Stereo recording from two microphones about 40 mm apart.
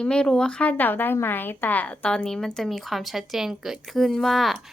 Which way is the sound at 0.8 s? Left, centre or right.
Left.